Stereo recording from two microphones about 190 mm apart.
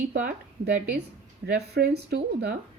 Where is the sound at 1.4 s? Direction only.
60° right (ahead or behind).